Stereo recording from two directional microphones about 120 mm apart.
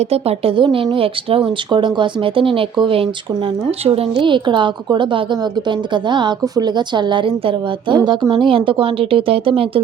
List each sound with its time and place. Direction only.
0.0 s speech: 60° right (ahead or behind)